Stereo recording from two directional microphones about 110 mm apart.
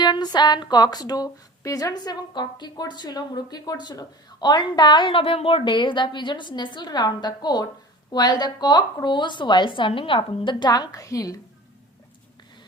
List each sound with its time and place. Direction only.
0.0 s a woman's voice: 40° left (ahead or behind)